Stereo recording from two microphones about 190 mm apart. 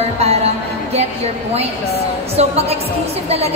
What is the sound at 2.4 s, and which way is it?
Speech, 35° right (ahead or behind).